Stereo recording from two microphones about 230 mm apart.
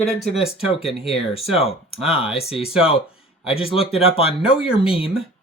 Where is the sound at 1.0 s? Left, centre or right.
Left.